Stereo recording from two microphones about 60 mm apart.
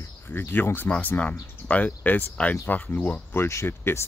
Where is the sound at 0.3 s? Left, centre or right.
Left.